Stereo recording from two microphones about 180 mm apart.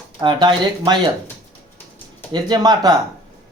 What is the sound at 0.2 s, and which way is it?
Speech, 25° right (ahead or behind).